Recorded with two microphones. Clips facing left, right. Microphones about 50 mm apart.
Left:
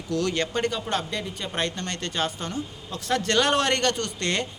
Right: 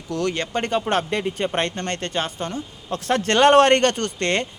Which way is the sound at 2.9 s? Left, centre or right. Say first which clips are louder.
Right 5 dB; right.